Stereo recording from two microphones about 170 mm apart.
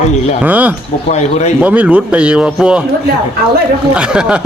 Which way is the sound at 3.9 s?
5° right (ahead or behind).